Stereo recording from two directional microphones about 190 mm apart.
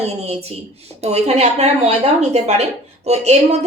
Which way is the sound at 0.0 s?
30° right (ahead or behind).